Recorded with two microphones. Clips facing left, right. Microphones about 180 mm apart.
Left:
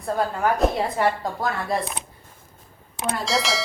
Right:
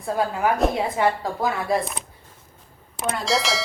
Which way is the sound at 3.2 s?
Centre (ahead or behind).